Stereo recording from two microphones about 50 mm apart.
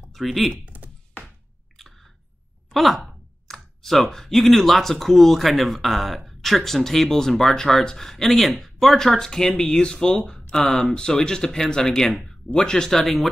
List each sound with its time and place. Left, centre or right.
0.1 s speech: centre
0.7 s a sound: right
2.7 s speech: centre